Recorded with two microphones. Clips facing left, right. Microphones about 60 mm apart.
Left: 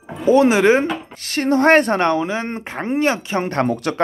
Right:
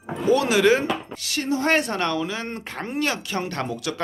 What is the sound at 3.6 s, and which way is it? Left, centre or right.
Speech, left.